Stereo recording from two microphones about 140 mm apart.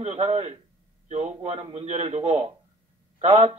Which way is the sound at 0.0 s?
40° right (ahead or behind).